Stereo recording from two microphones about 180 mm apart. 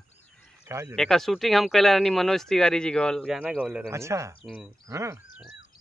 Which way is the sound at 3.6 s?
15° right (ahead or behind).